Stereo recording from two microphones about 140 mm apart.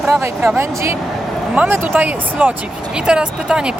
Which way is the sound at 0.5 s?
20° right (ahead or behind).